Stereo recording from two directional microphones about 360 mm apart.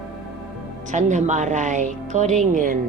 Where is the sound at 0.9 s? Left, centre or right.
Centre.